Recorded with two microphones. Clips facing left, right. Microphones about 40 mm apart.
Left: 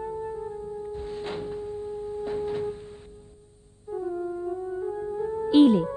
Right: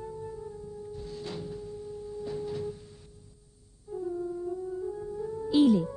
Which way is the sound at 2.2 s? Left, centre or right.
Left.